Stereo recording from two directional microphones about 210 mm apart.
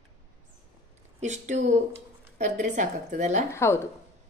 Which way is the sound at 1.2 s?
35° right (ahead or behind).